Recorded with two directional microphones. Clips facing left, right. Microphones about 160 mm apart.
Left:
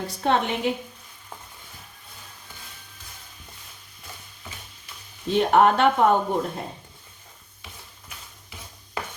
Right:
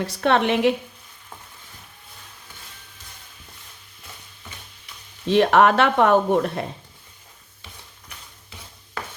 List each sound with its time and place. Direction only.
0.0 s speech: 75° right (ahead or behind)
5.3 s speech: 90° right